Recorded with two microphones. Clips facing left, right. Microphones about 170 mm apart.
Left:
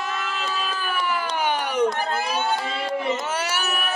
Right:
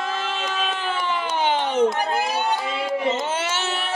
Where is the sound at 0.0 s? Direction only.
30° right (ahead or behind).